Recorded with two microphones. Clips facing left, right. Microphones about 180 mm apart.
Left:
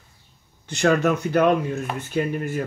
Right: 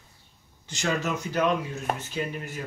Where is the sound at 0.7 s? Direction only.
60° left (ahead or behind).